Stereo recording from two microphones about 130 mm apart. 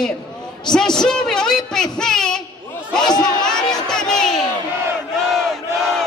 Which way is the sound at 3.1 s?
30° left (ahead or behind).